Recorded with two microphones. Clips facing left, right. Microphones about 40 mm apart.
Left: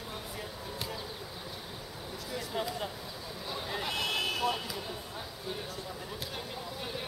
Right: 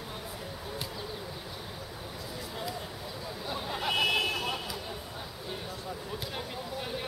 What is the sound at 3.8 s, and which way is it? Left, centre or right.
Vehicle, right.